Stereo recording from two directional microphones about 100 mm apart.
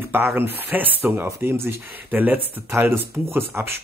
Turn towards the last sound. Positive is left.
turn(degrees=-25)  # may be behind; listen again after turning